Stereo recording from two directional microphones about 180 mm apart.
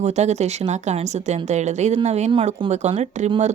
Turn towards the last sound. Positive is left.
turn(degrees=-40)  # may be behind; listen again after turning